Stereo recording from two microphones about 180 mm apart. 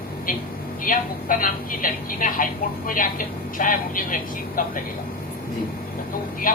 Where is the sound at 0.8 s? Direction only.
50° left (ahead or behind).